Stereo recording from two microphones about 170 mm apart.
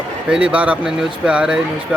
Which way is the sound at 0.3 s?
5° right (ahead or behind).